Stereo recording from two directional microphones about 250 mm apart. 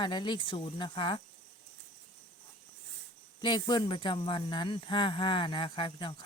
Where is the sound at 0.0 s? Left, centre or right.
Centre.